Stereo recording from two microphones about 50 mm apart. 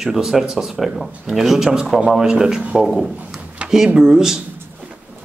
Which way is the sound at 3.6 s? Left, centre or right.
Right.